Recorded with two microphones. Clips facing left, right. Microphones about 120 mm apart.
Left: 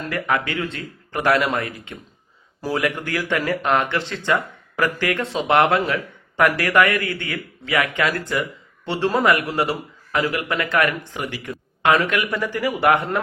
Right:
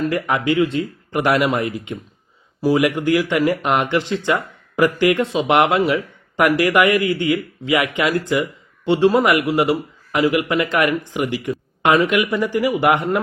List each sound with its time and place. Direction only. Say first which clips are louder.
0.0 s speech: right 4 dB; 15° right (ahead or behind)